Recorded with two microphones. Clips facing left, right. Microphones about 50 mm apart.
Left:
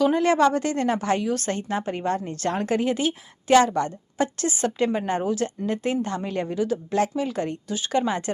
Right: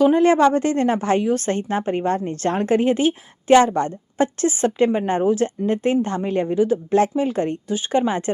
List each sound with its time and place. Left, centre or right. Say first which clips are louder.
0.0 s a woman's voice: right 5 dB; right